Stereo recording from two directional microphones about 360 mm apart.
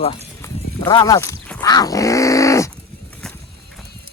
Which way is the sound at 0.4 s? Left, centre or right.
Centre.